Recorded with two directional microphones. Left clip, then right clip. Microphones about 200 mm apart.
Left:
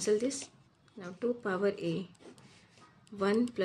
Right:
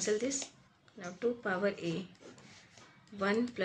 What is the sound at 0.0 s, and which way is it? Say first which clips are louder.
A woman's voice: left 3 dB; 60° left (ahead or behind).